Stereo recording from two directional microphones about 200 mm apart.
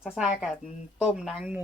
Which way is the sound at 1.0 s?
5° right (ahead or behind).